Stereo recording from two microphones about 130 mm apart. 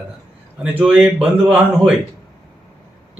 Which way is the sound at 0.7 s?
10° right (ahead or behind).